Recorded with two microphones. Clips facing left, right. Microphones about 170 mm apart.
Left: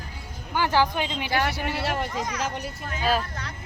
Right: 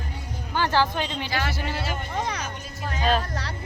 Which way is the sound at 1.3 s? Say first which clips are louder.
Left 3 dB; 55° left (ahead or behind).